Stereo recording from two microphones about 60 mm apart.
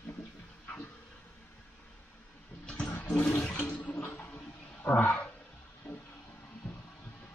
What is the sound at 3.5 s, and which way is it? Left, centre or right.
Bathtub, left.